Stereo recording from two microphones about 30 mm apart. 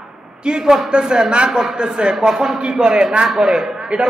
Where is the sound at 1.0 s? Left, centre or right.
Right.